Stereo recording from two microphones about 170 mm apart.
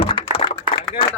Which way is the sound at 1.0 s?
30° left (ahead or behind).